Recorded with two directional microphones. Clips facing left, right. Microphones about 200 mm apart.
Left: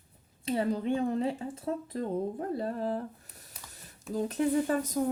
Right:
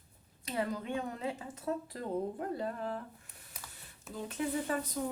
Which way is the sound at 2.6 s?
35° left (ahead or behind).